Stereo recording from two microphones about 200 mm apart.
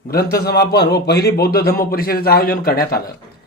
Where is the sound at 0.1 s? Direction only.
50° left (ahead or behind).